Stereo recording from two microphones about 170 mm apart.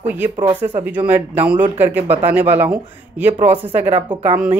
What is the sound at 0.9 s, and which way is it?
Speech, 10° right (ahead or behind).